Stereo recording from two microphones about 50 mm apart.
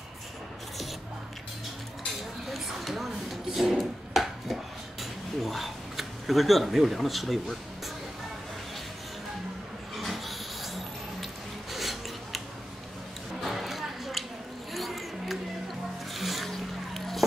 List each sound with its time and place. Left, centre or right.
2.5 s chopping: centre
5.4 s speech: centre
9.9 s dog: centre
11.7 s a sound: centre
13.4 s a sound: centre
14.7 s music: centre
16.2 s boat: centre